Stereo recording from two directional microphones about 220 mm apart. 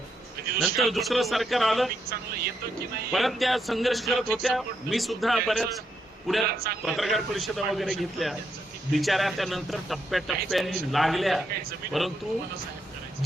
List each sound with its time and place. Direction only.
0.6 s speech: centre (ahead or behind)
3.1 s speech: centre (ahead or behind)
6.5 s a man's voice: 45° right (ahead or behind)
6.8 s speech: centre (ahead or behind)